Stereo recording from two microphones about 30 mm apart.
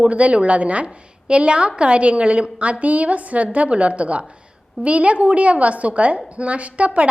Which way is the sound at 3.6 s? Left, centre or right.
Right.